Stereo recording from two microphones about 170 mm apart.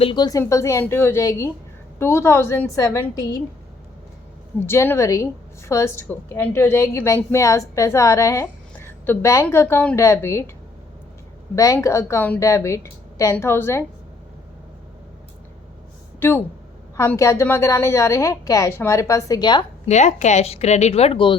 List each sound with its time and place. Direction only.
0.0 s a woman's voice: 25° left (ahead or behind)
4.6 s a woman's voice: 15° left (ahead or behind)
11.5 s a woman's voice: 20° left (ahead or behind)
16.2 s a woman's voice: 10° left (ahead or behind)
19.9 s a woman's voice: 45° left (ahead or behind)